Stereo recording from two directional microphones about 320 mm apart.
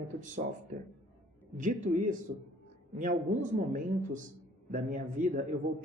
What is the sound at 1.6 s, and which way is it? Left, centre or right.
Speech, right.